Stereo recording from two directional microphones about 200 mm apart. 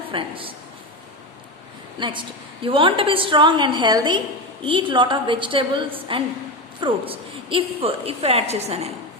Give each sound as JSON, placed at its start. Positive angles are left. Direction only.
{"t": 0.1, "sound": "a woman's voice", "side_deg": -25}
{"t": 2.0, "sound": "a woman's voice", "side_deg": -25}